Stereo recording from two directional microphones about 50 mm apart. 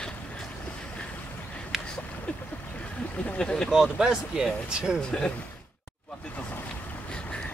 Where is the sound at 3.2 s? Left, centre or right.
Centre.